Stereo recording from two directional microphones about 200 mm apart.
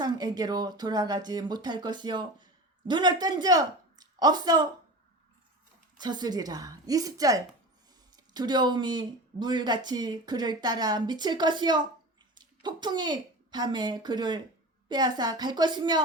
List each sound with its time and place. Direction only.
0.0 s speech: 20° right (ahead or behind)
6.0 s a woman's voice: 20° right (ahead or behind)